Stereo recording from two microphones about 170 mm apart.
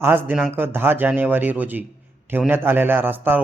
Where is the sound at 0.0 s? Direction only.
10° right (ahead or behind).